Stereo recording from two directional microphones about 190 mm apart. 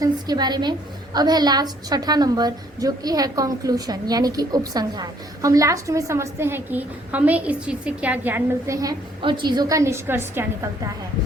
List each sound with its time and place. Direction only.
0.0 s a woman's voice: 20° right (ahead or behind)